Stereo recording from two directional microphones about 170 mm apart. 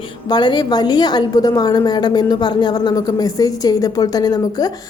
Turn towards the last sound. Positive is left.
turn(degrees=25)  # may be behind; listen again after turning